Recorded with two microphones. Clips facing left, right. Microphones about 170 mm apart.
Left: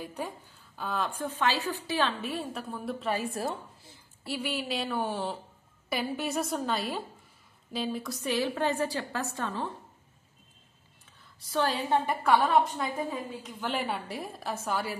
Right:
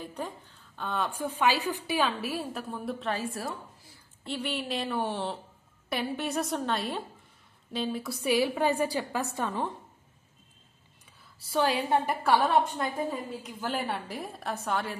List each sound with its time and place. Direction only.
0.0 s a woman's voice: 10° left (ahead or behind)
3.3 s a woman's voice: 20° left (ahead or behind)
4.2 s a woman's voice: 5° left (ahead or behind); by 9.8 s 15° right (ahead or behind)
11.5 s a woman's voice: 10° right (ahead or behind)